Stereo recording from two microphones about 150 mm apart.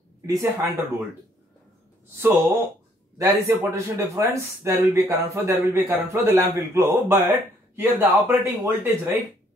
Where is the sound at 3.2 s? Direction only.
20° right (ahead or behind).